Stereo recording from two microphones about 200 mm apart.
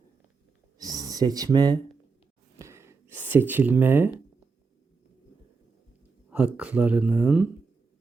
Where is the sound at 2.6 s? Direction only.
15° right (ahead or behind).